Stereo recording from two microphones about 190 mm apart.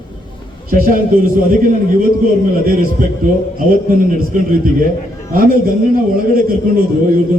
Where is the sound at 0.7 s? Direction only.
50° right (ahead or behind).